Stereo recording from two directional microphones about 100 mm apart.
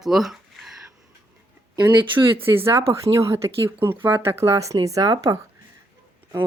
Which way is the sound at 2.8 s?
70° right (ahead or behind).